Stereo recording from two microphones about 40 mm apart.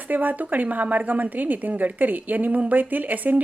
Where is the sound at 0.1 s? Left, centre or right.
Right.